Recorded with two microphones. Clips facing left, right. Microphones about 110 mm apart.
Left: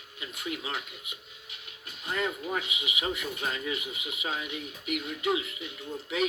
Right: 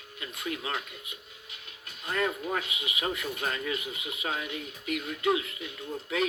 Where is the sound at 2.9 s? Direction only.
10° left (ahead or behind).